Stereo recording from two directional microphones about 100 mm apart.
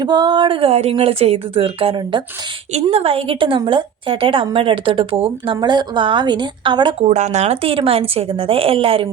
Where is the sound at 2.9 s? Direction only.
70° right (ahead or behind).